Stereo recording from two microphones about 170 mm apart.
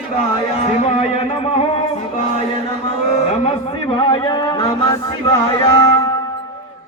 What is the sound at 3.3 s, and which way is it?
Speech, 35° left (ahead or behind).